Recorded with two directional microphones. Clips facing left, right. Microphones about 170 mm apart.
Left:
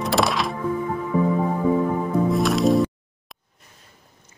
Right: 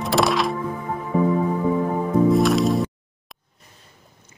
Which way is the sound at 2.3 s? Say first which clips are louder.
Right 1 dB; centre (ahead or behind).